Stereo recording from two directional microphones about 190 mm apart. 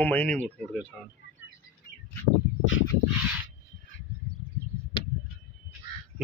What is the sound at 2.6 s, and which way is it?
Bird, 90° left.